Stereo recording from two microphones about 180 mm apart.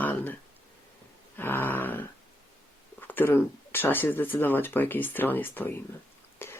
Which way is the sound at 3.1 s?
10° left (ahead or behind).